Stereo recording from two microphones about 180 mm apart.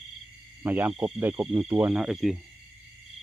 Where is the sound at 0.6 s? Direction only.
10° right (ahead or behind).